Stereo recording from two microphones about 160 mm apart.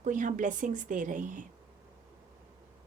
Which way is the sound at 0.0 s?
50° right (ahead or behind).